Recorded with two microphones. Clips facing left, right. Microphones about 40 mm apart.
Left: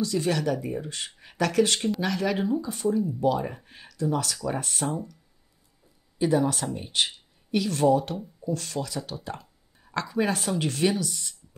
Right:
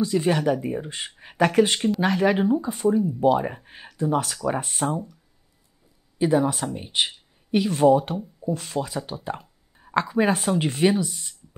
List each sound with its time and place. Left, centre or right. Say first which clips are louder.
0.0 s speech: right 4 dB; right
6.1 s speech: right 3 dB; right